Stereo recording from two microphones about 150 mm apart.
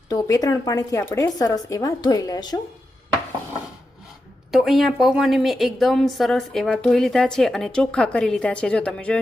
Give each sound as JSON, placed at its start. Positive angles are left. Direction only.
{"t": 0.1, "sound": "a woman's voice", "side_deg": 25}
{"t": 4.5, "sound": "a woman's voice", "side_deg": 0}